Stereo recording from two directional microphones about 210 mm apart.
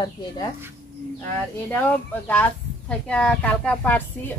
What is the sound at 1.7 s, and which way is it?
Speech, 10° left (ahead or behind).